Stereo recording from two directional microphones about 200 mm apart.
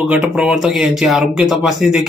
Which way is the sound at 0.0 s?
5° right (ahead or behind).